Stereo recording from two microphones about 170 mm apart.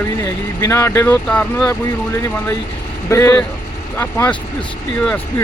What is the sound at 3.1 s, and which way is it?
Speech, 15° left (ahead or behind).